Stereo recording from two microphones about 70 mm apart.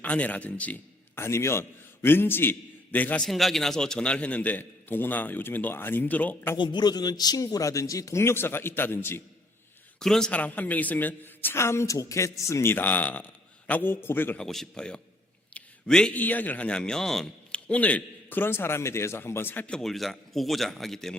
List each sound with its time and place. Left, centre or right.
0.0 s a man's voice: left
1.1 s a man's voice: left
3.2 s a man's voice: centre; by 6.5 s left
6.6 s a man's voice: left
7.5 s speech: left
8.2 s a woman's voice: left
10.0 s a man's voice: centre
10.3 s a woman's voice: left
12.7 s a man's voice: left
14.3 s a man's voice: centre
15.5 s a sound: centre
16.1 s a man's voice: left; by 17.2 s centre
17.5 s a woman's voice: centre
19.6 s a man's voice: centre